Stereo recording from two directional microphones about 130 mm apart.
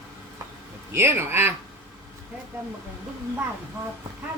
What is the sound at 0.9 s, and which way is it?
Speech, 20° right (ahead or behind).